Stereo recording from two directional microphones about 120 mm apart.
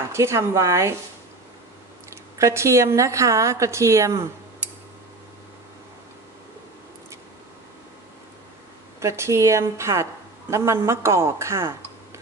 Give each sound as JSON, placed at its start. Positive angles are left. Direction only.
{"t": 0.1, "sound": "a woman's voice", "side_deg": -25}
{"t": 2.3, "sound": "a woman's voice", "side_deg": -25}
{"t": 9.0, "sound": "a woman's voice", "side_deg": -25}